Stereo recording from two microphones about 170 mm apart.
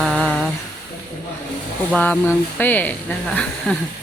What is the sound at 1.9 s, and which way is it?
Speech, 10° left (ahead or behind).